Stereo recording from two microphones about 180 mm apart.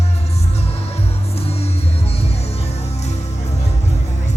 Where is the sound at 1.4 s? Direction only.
35° left (ahead or behind).